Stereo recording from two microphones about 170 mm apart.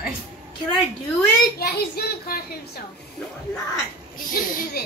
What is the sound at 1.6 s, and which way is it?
Speech, 65° left (ahead or behind).